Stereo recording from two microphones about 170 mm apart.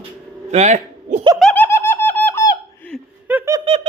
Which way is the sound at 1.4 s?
10° left (ahead or behind).